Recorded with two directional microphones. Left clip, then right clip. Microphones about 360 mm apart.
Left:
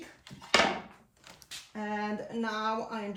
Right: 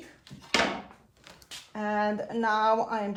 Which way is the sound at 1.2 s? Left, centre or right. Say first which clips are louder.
Right 1 dB; centre.